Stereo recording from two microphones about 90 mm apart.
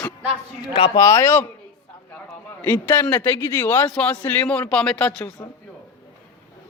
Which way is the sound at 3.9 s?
15° left (ahead or behind).